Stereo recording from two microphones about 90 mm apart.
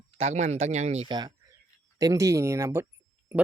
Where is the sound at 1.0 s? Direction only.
55° right (ahead or behind).